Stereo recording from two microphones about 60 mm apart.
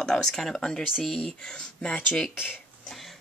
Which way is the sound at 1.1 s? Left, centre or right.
Centre.